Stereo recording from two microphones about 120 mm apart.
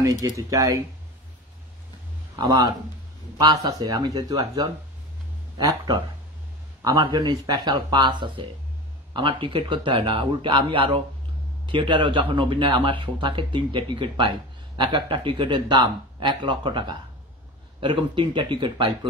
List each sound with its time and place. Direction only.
0.2 s speech: 30° right (ahead or behind)
2.3 s a man's voice: 35° right (ahead or behind)